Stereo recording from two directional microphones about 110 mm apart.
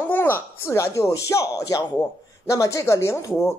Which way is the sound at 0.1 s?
20° left (ahead or behind).